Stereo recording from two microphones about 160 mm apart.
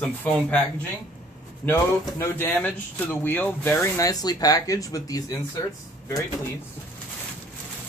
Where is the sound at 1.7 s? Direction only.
15° left (ahead or behind).